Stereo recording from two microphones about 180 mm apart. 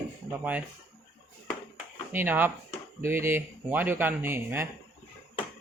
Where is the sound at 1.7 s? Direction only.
10° right (ahead or behind).